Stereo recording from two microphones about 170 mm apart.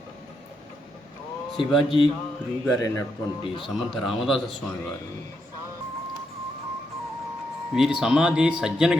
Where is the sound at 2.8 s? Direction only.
20° left (ahead or behind).